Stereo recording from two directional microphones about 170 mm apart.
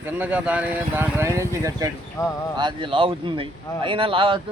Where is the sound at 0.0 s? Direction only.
10° right (ahead or behind).